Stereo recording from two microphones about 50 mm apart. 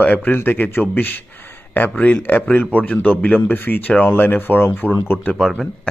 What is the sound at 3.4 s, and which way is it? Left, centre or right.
Speech, left.